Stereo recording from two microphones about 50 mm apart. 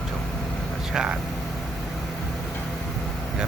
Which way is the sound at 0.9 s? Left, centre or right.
Centre.